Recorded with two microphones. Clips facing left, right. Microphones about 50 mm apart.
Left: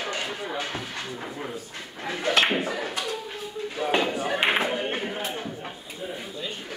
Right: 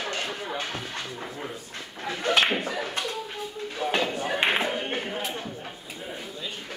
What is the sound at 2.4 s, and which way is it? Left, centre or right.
Speech, centre.